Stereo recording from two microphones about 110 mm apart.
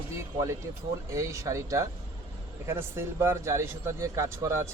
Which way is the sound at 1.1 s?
25° right (ahead or behind).